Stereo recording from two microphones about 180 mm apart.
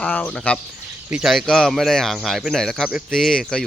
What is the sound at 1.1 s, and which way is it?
Speech, centre (ahead or behind).